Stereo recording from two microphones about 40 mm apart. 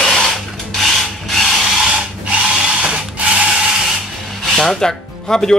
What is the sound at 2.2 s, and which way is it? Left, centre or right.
Tools, right.